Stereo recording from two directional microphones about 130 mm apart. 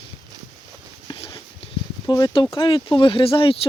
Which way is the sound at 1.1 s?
45° left (ahead or behind).